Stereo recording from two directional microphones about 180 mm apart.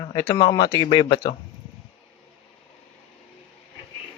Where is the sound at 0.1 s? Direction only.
25° left (ahead or behind).